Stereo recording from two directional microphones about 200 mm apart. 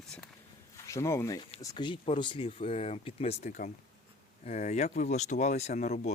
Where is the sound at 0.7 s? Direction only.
15° left (ahead or behind); by 6.1 s 35° left (ahead or behind).